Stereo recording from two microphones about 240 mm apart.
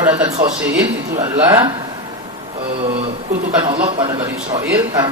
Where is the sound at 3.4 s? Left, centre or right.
Right.